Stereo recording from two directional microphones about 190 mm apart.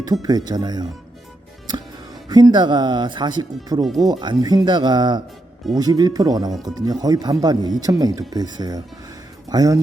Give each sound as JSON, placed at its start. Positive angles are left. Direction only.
{"t": 0.0, "sound": "speech", "side_deg": -20}
{"t": 2.3, "sound": "speech", "side_deg": -20}